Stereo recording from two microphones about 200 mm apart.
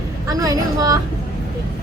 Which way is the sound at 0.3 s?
15° right (ahead or behind).